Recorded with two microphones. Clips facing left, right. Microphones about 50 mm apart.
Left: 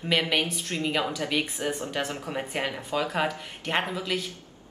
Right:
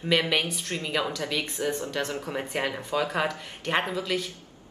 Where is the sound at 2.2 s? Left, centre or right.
Centre.